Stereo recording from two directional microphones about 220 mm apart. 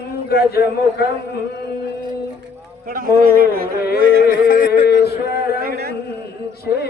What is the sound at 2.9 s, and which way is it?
Speech, 40° right (ahead or behind).